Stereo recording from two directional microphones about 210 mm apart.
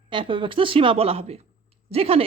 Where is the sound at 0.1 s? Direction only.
25° right (ahead or behind).